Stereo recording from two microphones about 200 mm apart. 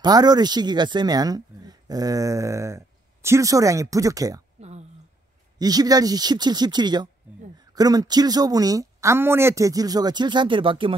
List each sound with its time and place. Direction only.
0.0 s speech: 20° right (ahead or behind)
4.6 s a sound: 35° right (ahead or behind)
5.6 s speech: 20° right (ahead or behind)